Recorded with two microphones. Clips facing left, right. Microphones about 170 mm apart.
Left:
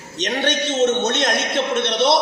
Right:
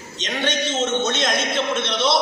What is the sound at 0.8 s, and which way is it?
A man's voice, 65° left (ahead or behind).